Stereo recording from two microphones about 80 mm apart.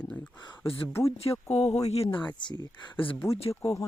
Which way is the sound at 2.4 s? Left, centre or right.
Left.